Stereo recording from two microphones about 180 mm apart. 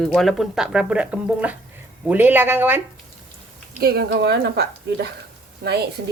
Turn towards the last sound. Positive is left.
turn(degrees=-60)  # may be behind; listen again after turning